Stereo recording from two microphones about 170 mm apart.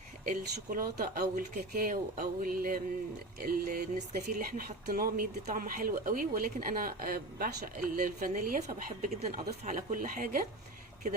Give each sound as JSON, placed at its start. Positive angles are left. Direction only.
{"t": 0.3, "sound": "speech", "side_deg": -55}